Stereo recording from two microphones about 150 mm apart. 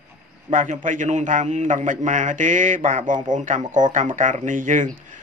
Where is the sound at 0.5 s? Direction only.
60° right (ahead or behind).